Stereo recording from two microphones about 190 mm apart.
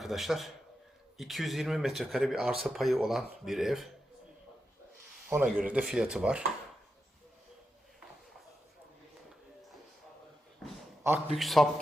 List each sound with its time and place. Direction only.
0.0 s speech: centre (ahead or behind)
5.3 s speech: 5° right (ahead or behind)
11.3 s speech: centre (ahead or behind)